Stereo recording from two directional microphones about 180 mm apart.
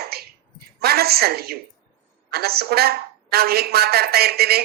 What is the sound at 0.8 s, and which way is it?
A woman's voice, 60° right (ahead or behind).